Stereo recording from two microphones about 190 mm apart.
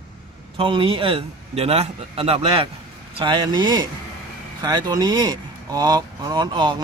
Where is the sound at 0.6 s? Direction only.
25° right (ahead or behind).